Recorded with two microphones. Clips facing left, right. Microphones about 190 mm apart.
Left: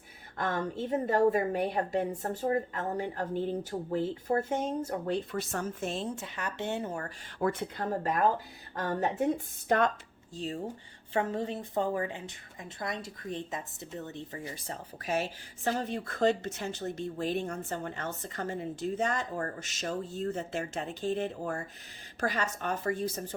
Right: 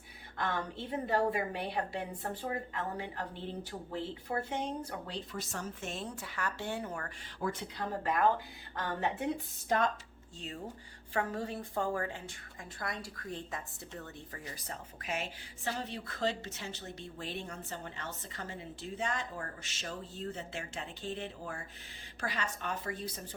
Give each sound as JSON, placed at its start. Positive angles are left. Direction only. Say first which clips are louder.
{"t": 0.3, "sound": "a woman's voice", "louder": "left 4 dB", "side_deg": 45}
{"t": 5.8, "sound": "a woman's voice", "louder": "left 6 dB", "side_deg": 30}
{"t": 7.3, "sound": "a woman's voice", "louder": "left 6 dB", "side_deg": 55}
{"t": 9.6, "sound": "speech", "louder": "left 4 dB", "side_deg": 65}
{"t": 10.3, "sound": "a woman's voice", "louder": "left 7 dB", "side_deg": 35}